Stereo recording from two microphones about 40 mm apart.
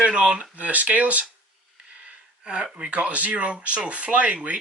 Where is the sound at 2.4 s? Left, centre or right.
Right.